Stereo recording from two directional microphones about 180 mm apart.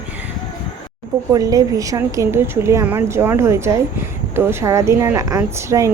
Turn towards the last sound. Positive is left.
turn(degrees=-20)  # may be behind; listen again after turning